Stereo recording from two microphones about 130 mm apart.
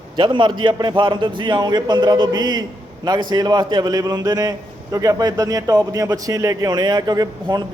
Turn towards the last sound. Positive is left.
turn(degrees=-30)  # may be behind; listen again after turning